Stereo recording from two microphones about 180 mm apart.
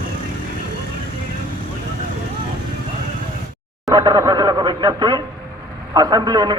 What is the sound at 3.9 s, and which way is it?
A man's voice, 20° right (ahead or behind).